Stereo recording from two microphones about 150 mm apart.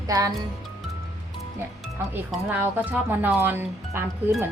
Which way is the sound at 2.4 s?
10° right (ahead or behind).